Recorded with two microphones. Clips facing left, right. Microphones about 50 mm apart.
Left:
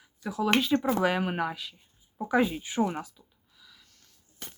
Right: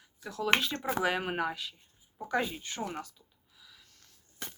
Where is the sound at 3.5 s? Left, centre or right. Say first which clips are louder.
Left 1 dB; centre.